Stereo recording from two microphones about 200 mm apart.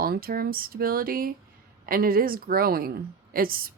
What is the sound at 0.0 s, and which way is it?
A woman's voice, 45° right (ahead or behind).